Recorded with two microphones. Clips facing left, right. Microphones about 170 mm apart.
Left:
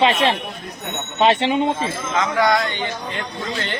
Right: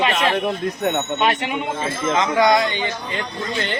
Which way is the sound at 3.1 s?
Centre (ahead or behind).